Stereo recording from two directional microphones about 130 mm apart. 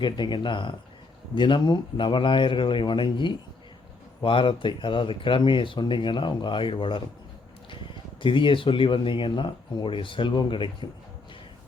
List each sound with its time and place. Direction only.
0.0 s speech: 35° left (ahead or behind)
8.2 s speech: 40° left (ahead or behind)